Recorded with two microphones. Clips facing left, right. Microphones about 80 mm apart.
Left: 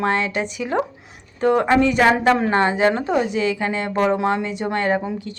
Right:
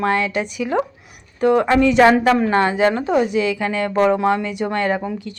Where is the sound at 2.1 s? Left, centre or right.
Left.